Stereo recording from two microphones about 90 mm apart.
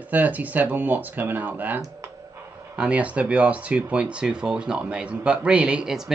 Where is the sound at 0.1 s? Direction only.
20° right (ahead or behind).